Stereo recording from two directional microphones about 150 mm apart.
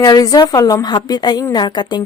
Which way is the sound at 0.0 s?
25° left (ahead or behind).